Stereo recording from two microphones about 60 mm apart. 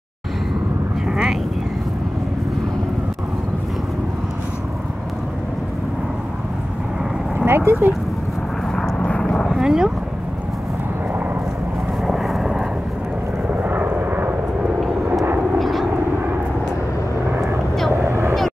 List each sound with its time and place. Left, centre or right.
1.0 s a sound: centre
7.4 s dog: right
8.9 s vehicle: centre
9.6 s dog: centre
12.0 s vehicle: centre
13.6 s vehicle: right
15.6 s vehicle: centre
18.0 s vehicle: right